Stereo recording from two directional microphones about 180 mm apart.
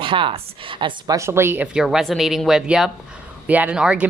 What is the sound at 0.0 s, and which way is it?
A woman's voice, 30° right (ahead or behind).